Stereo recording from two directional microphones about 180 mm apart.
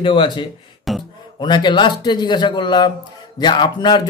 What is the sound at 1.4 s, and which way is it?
Speech, 25° left (ahead or behind).